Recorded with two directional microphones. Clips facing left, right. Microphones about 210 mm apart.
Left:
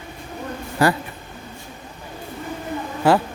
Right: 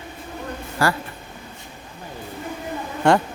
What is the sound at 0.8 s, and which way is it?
Speech, 20° left (ahead or behind).